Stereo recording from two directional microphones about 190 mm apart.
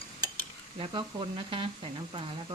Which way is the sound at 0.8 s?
25° right (ahead or behind).